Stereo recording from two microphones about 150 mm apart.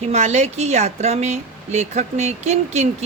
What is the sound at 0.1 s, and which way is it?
Speech, 50° right (ahead or behind).